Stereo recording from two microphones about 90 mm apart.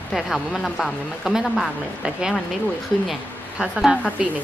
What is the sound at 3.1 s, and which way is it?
Speech, 5° right (ahead or behind).